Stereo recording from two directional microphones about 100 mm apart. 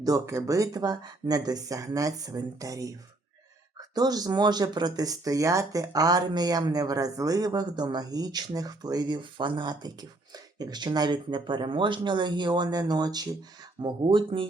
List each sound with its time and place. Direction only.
0.0 s speech: 40° right (ahead or behind)
13.8 s speech: 55° right (ahead or behind)